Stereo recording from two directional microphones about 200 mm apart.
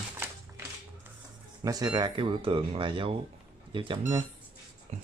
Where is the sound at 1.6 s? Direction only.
20° right (ahead or behind).